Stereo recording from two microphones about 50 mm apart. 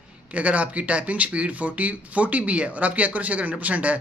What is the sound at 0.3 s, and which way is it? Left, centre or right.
Speech, right.